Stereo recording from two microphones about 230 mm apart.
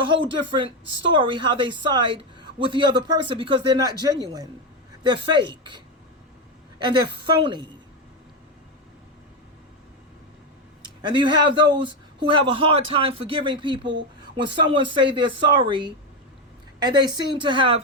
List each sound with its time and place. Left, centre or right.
0.0 s a woman's voice: right
10.8 s a woman's voice: right